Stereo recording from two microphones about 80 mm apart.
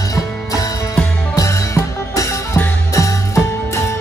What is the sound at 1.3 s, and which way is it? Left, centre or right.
Music, left.